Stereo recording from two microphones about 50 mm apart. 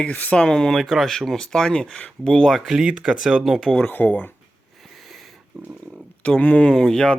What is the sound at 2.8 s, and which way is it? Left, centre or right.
Speech, centre.